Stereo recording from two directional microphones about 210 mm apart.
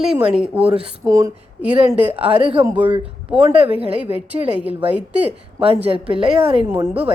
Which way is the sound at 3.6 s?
30° right (ahead or behind).